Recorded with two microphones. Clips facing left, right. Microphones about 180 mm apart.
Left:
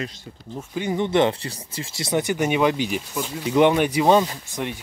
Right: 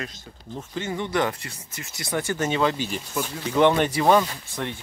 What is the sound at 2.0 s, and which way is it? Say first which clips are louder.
Speech: left 4 dB; 20° left (ahead or behind).